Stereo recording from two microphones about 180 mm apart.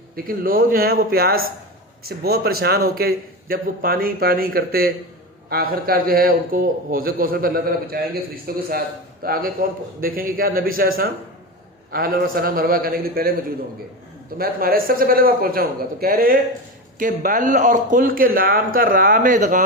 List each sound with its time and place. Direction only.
0.3 s a man's voice: 50° right (ahead or behind)